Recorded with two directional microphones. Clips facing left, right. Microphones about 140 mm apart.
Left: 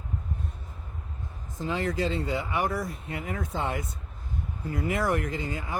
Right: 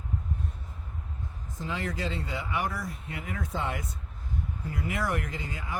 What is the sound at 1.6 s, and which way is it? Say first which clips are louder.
Speech: left 5 dB; 30° left (ahead or behind).